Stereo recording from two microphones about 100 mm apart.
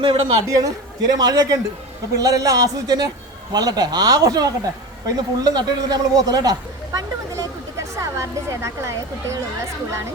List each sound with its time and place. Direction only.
0.0 s a man's voice: 60° right (ahead or behind)
0.4 s speech: 40° right (ahead or behind)